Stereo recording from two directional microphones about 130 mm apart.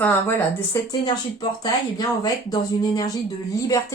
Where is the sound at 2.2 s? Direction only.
30° left (ahead or behind).